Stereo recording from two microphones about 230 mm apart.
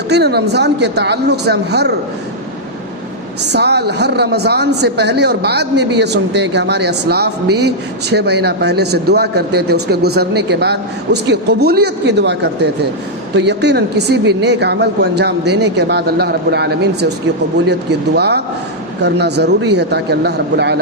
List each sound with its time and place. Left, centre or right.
0.1 s speech: right
3.5 s speech: right